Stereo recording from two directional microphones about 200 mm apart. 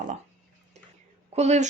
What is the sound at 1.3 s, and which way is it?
Speech, 35° right (ahead or behind).